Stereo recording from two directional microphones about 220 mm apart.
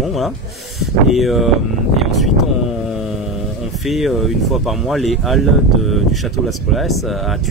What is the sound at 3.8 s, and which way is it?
Speech, centre (ahead or behind).